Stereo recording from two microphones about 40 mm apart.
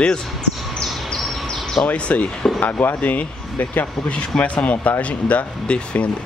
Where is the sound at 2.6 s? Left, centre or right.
Left.